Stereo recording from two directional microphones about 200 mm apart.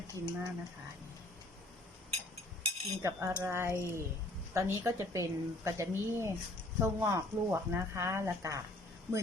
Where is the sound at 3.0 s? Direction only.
10° right (ahead or behind).